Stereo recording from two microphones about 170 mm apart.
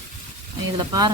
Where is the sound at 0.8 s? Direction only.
25° right (ahead or behind).